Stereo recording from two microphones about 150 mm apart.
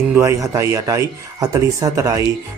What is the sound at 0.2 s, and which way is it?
Speech, 20° right (ahead or behind).